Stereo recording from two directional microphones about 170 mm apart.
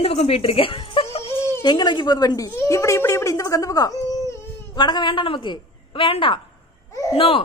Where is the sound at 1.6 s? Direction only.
25° left (ahead or behind).